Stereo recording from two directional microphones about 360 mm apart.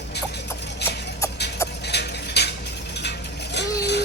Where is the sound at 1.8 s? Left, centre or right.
Left.